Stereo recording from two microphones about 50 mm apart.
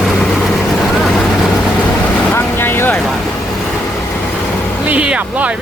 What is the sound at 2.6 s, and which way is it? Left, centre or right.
Vehicle, left.